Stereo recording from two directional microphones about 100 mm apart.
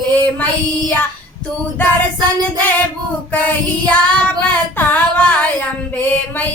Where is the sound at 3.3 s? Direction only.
15° left (ahead or behind).